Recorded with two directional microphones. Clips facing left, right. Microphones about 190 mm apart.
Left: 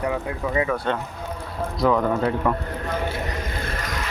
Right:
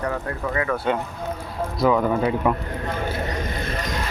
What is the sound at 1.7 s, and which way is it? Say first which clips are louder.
Speech: right 1 dB; 5° right (ahead or behind).